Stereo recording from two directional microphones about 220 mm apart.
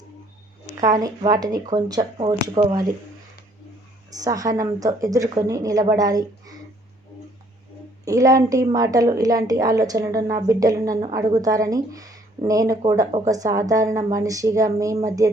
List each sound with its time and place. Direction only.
0.8 s a woman's voice: 15° right (ahead or behind)
4.2 s a woman's voice: 15° right (ahead or behind)
8.0 s a woman's voice: 15° right (ahead or behind)